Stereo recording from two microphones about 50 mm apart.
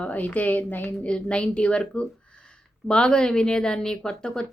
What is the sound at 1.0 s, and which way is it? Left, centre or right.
A woman's voice, left.